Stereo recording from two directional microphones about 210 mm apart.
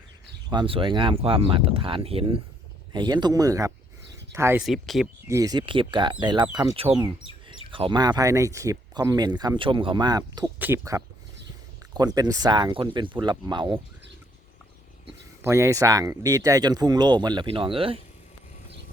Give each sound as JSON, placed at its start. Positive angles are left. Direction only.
{"t": 0.5, "sound": "speech", "side_deg": -25}
{"t": 4.6, "sound": "speech", "side_deg": 0}
{"t": 5.3, "sound": "speech", "side_deg": -15}
{"t": 15.4, "sound": "speech", "side_deg": -15}